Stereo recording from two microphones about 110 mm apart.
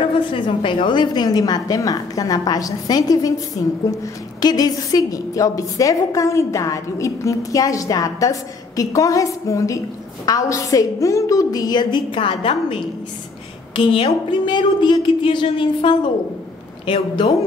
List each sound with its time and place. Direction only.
0.0 s a woman's voice: 50° left (ahead or behind)
13.7 s a woman's voice: 55° left (ahead or behind)